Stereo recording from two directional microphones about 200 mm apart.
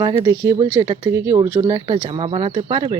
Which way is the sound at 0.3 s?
15° right (ahead or behind).